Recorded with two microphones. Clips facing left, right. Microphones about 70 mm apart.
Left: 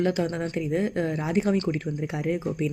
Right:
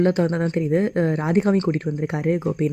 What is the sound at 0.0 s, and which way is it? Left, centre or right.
A woman's voice, right.